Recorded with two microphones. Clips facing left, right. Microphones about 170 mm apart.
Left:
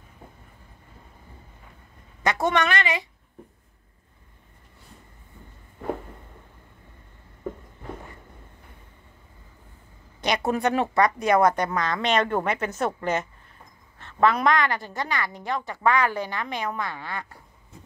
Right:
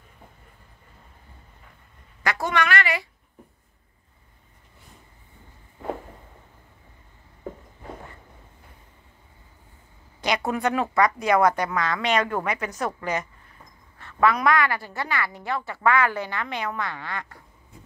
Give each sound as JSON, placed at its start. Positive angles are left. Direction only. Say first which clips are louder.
{"t": 2.2, "sound": "a woman's voice", "louder": "left 2 dB", "side_deg": 20}
{"t": 10.2, "sound": "a woman's voice", "louder": "left 1 dB", "side_deg": 25}